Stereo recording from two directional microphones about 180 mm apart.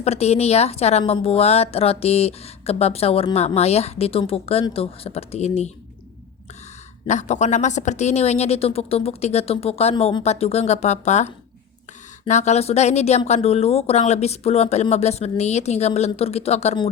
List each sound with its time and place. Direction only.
0.0 s a woman's voice: 35° left (ahead or behind)
7.1 s a woman's voice: 40° left (ahead or behind)
12.3 s a woman's voice: 40° left (ahead or behind)